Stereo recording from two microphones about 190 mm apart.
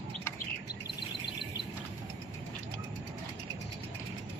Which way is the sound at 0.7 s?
5° right (ahead or behind).